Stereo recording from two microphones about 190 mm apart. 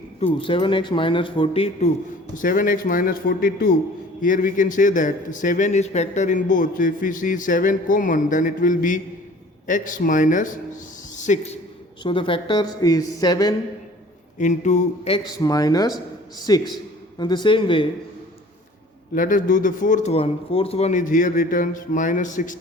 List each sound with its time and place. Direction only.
0.3 s a man's voice: 25° left (ahead or behind)
2.3 s a man's voice: 45° left (ahead or behind)
12.0 s a man's voice: 25° left (ahead or behind)
14.3 s a man's voice: 40° left (ahead or behind)
15.4 s a man's voice: 20° left (ahead or behind)
19.1 s a man's voice: 45° left (ahead or behind)